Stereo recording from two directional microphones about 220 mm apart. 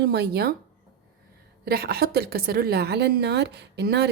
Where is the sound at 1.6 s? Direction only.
45° right (ahead or behind).